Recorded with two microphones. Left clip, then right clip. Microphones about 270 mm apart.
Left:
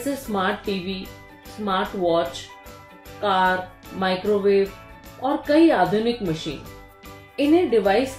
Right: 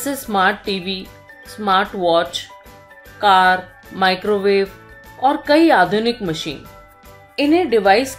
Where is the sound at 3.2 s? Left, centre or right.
Centre.